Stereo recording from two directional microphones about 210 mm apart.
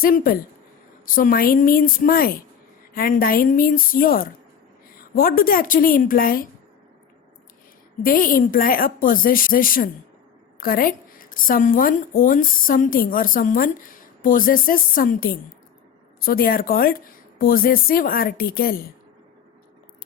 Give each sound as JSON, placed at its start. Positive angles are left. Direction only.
{"t": 0.0, "sound": "a woman's voice", "side_deg": 45}
{"t": 8.0, "sound": "a woman's voice", "side_deg": 40}